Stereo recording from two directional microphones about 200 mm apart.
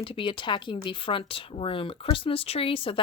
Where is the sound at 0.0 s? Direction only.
25° left (ahead or behind).